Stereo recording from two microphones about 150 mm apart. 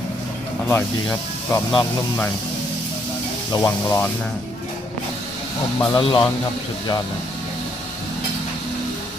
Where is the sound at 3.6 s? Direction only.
15° left (ahead or behind).